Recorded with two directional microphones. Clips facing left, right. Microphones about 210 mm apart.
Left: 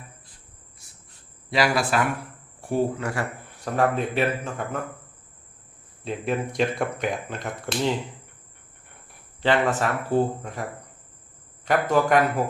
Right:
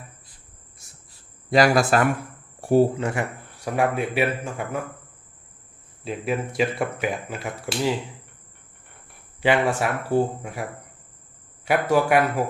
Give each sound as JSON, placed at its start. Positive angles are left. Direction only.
{"t": 0.8, "sound": "cricket", "side_deg": -45}
{"t": 1.5, "sound": "speech", "side_deg": -45}
{"t": 2.6, "sound": "cricket", "side_deg": -40}
{"t": 3.0, "sound": "speech", "side_deg": -20}
{"t": 3.6, "sound": "speech", "side_deg": -10}
{"t": 6.1, "sound": "speech", "side_deg": -5}
{"t": 9.4, "sound": "speech", "side_deg": -10}